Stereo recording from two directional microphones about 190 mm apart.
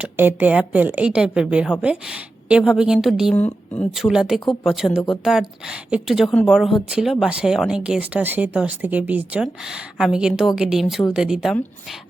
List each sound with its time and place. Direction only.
0.0 s a woman's voice: 10° right (ahead or behind)
4.9 s a woman's voice: 15° left (ahead or behind)
5.2 s speech: centre (ahead or behind)